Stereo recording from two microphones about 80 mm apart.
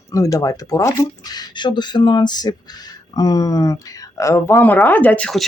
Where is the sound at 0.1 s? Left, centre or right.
Left.